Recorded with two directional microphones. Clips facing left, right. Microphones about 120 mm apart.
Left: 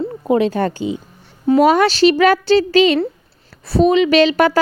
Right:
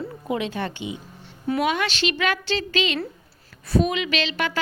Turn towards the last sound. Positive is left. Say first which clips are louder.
# left 13 dB
turn(degrees=40)  # may be behind; listen again after turning